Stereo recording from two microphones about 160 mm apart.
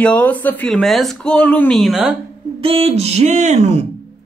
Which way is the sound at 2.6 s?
40° right (ahead or behind).